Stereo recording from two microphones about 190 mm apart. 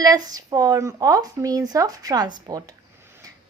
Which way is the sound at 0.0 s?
20° right (ahead or behind).